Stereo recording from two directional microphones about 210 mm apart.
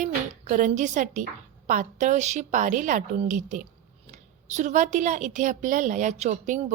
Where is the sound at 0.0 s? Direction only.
35° right (ahead or behind).